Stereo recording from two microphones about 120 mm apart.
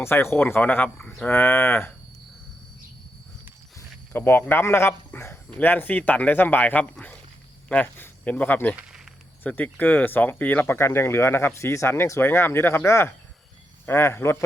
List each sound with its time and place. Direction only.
0.0 s speech: 20° left (ahead or behind)
3.8 s speech: 20° left (ahead or behind)
8.7 s a sound: 5° right (ahead or behind)
9.4 s speech: 15° left (ahead or behind)